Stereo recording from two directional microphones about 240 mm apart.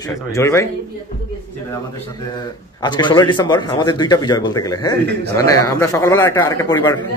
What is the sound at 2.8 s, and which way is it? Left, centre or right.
A man's voice, centre.